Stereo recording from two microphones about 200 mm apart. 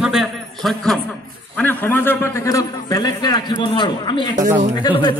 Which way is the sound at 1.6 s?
10° left (ahead or behind).